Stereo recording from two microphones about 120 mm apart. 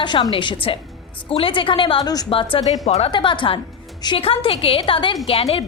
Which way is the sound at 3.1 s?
40° left (ahead or behind).